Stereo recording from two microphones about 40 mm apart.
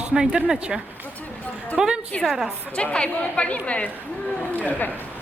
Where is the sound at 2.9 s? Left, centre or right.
Left.